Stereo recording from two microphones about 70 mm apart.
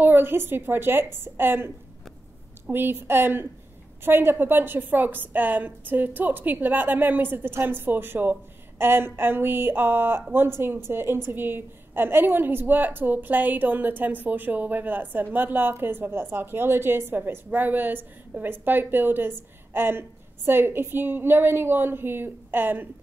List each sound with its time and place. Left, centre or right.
0.0 s a woman's voice: right
2.7 s a woman's voice: right